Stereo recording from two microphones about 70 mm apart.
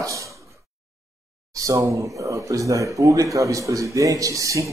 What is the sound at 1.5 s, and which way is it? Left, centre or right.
A man's voice, right.